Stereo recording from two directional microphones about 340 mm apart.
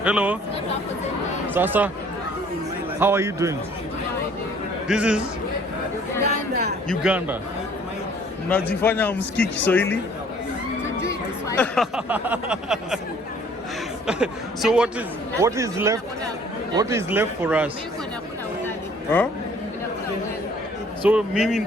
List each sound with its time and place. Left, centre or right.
0.0 s speech: centre
1.5 s speech: centre
3.0 s speech: centre
4.9 s speech: centre
6.5 s a man's voice: right
6.8 s speech: centre
8.4 s speech: centre
9.1 s speech: left
9.6 s speech: centre
14.1 s speech: centre
21.1 s speech: centre